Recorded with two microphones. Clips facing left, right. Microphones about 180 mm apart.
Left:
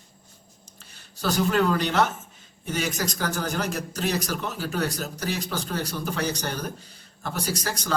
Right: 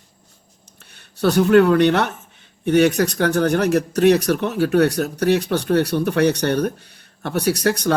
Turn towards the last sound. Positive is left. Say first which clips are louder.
# right 11 dB
turn(degrees=-65)  # may be behind; listen again after turning